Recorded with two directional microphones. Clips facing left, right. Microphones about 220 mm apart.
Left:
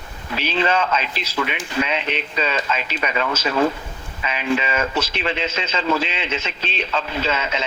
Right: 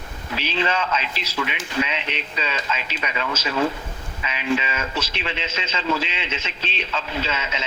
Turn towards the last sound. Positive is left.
turn(degrees=55)  # may be behind; listen again after turning